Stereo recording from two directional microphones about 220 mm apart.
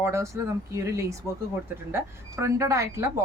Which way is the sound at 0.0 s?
10° right (ahead or behind).